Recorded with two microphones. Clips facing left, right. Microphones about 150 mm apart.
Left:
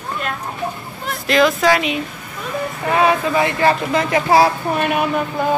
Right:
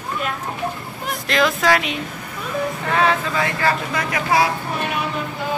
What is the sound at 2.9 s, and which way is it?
Speech, 15° left (ahead or behind).